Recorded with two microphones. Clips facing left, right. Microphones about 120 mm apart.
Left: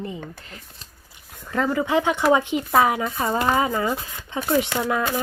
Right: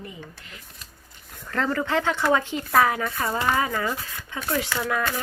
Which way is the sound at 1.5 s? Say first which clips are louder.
Left 3 dB; 15° left (ahead or behind).